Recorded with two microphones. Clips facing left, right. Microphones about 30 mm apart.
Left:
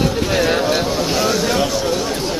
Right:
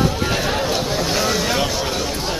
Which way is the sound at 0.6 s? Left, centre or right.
Centre.